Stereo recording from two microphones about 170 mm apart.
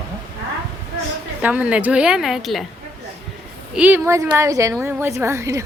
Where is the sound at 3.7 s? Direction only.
10° right (ahead or behind).